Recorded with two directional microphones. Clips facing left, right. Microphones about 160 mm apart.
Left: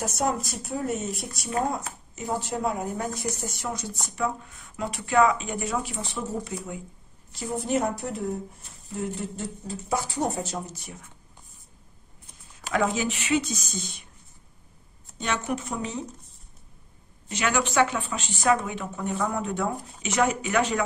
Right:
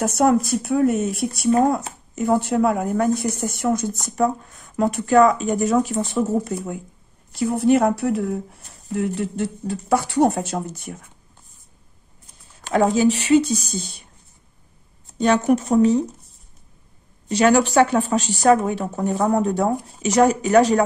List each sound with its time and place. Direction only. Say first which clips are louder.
0.0 s a woman's voice: right 10 dB; 60° right (ahead or behind)
7.3 s speech: right 10 dB; 65° right (ahead or behind)
12.7 s speech: right 9 dB; 35° right (ahead or behind)
15.1 s speech: right 12 dB; 40° right (ahead or behind)
17.3 s speech: right 10 dB; 35° right (ahead or behind)